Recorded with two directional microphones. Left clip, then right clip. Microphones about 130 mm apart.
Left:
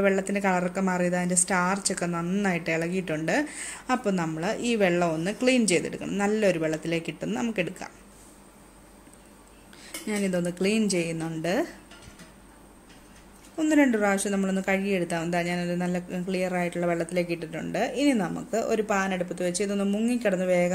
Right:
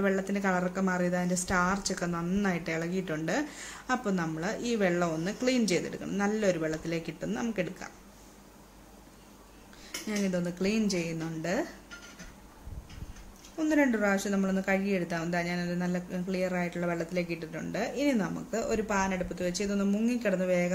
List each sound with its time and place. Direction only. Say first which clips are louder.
0.0 s speech: left 5 dB; 20° left (ahead or behind)
10.0 s speech: left 5 dB; 20° left (ahead or behind)
13.6 s speech: left 4 dB; 15° left (ahead or behind)